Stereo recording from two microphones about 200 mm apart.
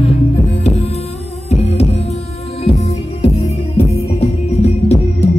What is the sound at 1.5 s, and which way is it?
Music, 30° left (ahead or behind).